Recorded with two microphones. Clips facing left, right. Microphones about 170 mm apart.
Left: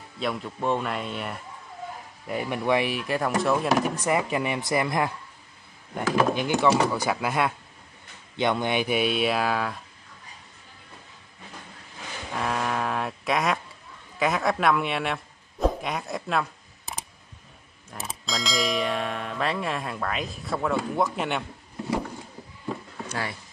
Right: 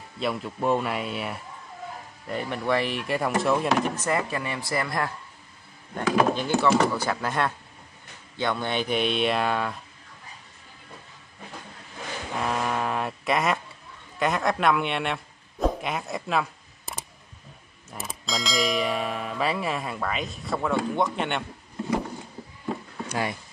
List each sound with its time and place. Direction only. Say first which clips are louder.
0.2 s bell: right 1 dB; 5° right (ahead or behind)
2.2 s speech: left 2 dB; 10° left (ahead or behind)
6.3 s speech: even; 15° left (ahead or behind)
12.4 s a sound: even; centre (ahead or behind)
14.2 s bell: even; centre (ahead or behind)
15.6 s camera: even; centre (ahead or behind)
17.9 s bell: right 1 dB; centre (ahead or behind)
23.0 s a sound: right 4 dB; 15° right (ahead or behind)